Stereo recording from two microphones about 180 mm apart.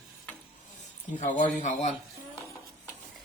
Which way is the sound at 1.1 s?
45° left (ahead or behind).